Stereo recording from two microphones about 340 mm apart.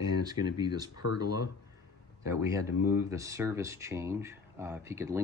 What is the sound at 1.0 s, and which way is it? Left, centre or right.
Speech, left.